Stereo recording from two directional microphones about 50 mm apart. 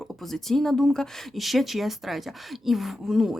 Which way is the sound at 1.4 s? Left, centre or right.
Centre.